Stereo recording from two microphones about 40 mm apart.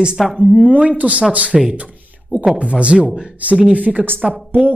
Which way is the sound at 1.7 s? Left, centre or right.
Right.